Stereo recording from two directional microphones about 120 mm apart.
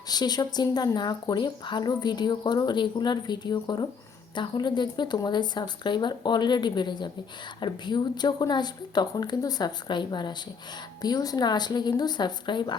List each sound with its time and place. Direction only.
0.1 s speech: 35° left (ahead or behind)